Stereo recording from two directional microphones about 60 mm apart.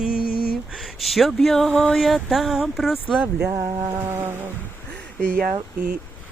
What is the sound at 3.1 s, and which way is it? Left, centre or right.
Speech, right.